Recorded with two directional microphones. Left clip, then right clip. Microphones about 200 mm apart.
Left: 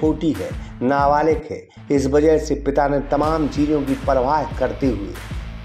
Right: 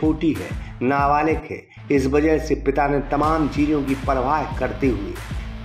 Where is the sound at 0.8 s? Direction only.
20° left (ahead or behind).